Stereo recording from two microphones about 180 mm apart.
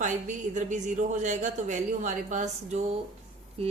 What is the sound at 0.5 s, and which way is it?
A woman's voice, 45° right (ahead or behind).